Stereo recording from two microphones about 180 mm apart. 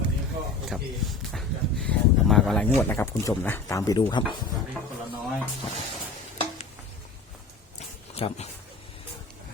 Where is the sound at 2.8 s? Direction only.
15° left (ahead or behind).